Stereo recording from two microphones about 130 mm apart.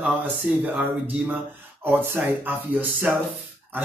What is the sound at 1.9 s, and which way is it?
Speech, 15° right (ahead or behind).